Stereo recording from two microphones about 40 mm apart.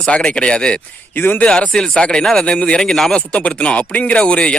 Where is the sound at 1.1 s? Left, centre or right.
Left.